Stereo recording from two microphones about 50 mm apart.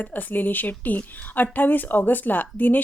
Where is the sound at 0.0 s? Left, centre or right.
Left.